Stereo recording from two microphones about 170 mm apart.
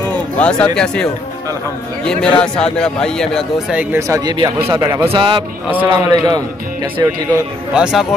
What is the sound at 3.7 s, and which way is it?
Speech, 15° right (ahead or behind).